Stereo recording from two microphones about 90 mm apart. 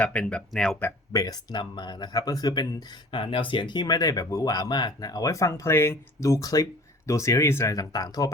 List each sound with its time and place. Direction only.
0.0 s speech: 15° left (ahead or behind)
1.1 s speech: 45° left (ahead or behind)